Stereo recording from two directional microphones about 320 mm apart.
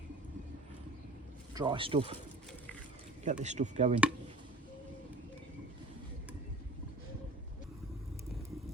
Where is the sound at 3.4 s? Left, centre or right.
Right.